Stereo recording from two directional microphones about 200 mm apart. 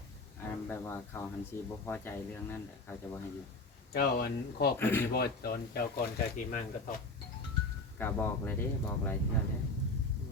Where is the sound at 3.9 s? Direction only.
50° left (ahead or behind).